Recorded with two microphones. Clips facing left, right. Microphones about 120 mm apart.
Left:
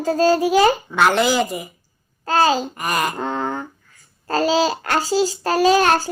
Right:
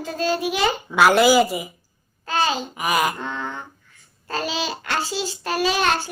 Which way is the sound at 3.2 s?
45° left (ahead or behind).